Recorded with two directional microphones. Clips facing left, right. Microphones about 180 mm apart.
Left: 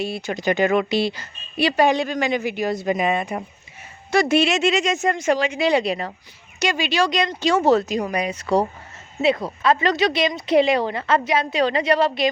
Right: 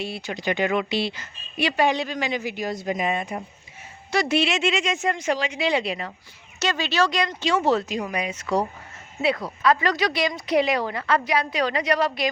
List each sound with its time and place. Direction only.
0.0 s speech: 45° left (ahead or behind); by 3.4 s 75° left (ahead or behind)
4.1 s speech: 50° left (ahead or behind)
6.6 s speech: 15° left (ahead or behind)
7.4 s speech: 40° left (ahead or behind)